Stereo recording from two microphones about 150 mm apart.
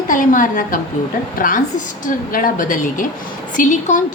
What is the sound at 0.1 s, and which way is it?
A woman's voice, 60° left (ahead or behind).